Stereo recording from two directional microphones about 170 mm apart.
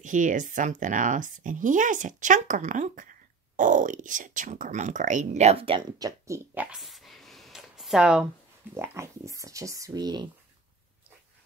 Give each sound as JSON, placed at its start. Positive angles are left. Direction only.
{"t": 0.0, "sound": "speech", "side_deg": -50}
{"t": 8.7, "sound": "speech", "side_deg": -15}